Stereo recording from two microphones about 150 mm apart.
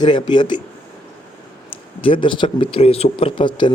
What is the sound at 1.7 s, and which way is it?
A man's voice, 35° left (ahead or behind).